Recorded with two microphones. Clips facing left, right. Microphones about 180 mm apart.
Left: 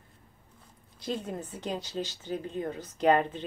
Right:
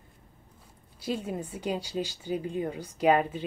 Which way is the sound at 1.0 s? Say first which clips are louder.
Right 2 dB; 10° right (ahead or behind).